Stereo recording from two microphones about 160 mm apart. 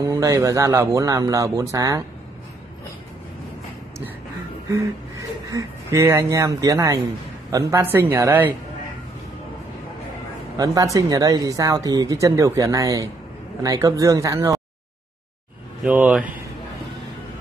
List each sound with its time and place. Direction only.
0.0 s speech: 20° right (ahead or behind)
5.5 s speech: 20° right (ahead or behind)
10.6 s speech: 20° right (ahead or behind)
15.8 s speech: 5° right (ahead or behind)